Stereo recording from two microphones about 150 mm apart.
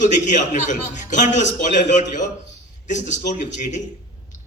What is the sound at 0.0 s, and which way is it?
A man's voice, 55° left (ahead or behind).